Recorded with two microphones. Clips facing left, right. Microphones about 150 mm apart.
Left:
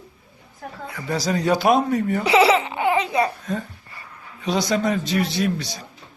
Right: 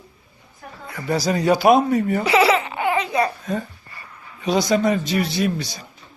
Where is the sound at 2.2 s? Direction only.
25° left (ahead or behind).